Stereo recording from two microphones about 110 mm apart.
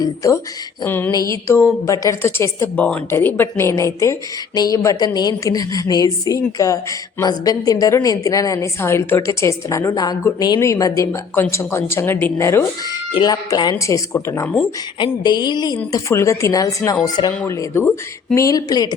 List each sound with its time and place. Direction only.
0.0 s a woman's voice: 30° left (ahead or behind)
0.9 s a woman's voice: 20° left (ahead or behind)
1.1 s a woman's voice: 30° left (ahead or behind)
12.8 s a woman's voice: 40° left (ahead or behind)
14.9 s a woman's voice: 45° left (ahead or behind)
15.9 s a woman's voice: 25° left (ahead or behind)